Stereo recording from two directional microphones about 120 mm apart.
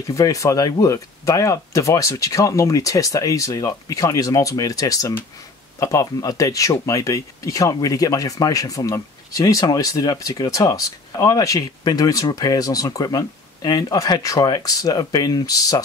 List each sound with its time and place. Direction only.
0.1 s speech: 30° left (ahead or behind)